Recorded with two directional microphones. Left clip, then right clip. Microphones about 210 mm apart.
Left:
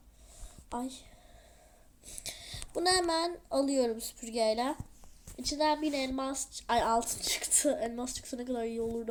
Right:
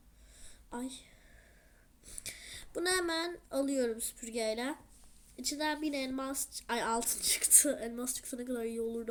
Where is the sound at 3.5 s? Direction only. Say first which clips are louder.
Left 3 dB; 5° right (ahead or behind).